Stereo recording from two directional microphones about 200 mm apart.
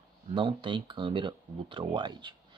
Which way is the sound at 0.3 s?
25° right (ahead or behind).